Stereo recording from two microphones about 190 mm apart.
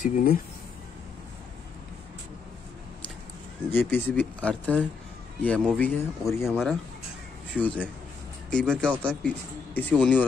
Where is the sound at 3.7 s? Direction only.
10° left (ahead or behind).